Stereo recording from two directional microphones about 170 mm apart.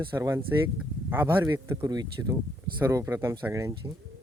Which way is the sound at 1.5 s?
25° right (ahead or behind).